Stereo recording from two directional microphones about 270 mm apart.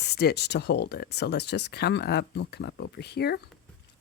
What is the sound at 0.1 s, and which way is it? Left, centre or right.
Speech, left.